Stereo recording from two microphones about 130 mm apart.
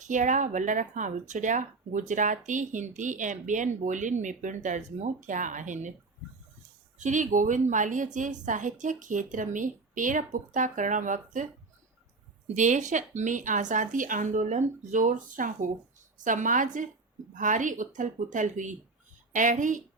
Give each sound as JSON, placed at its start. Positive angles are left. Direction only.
{"t": 0.0, "sound": "speech", "side_deg": -70}
{"t": 7.0, "sound": "speech", "side_deg": -75}
{"t": 12.5, "sound": "speech", "side_deg": -70}
{"t": 16.1, "sound": "a woman's voice", "side_deg": -80}